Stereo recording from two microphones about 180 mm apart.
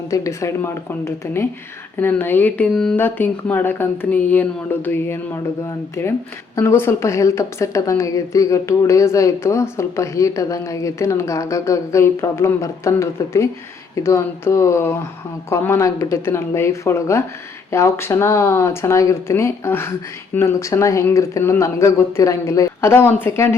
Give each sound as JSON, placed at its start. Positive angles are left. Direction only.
{"t": 0.1, "sound": "a woman's voice", "side_deg": 15}
{"t": 6.6, "sound": "a woman's voice", "side_deg": 15}